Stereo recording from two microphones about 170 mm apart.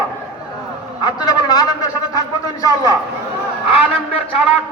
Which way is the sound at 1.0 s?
25° left (ahead or behind).